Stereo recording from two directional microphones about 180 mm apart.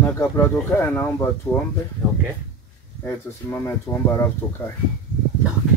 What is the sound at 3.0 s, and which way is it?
Speech, 15° left (ahead or behind).